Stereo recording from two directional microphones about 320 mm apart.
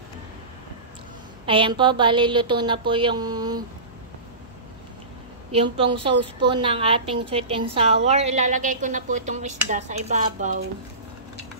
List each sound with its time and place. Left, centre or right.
1.4 s a woman's voice: centre
5.5 s a woman's voice: centre